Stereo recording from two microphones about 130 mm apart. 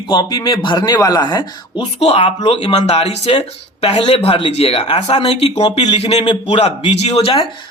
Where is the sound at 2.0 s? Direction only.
55° left (ahead or behind).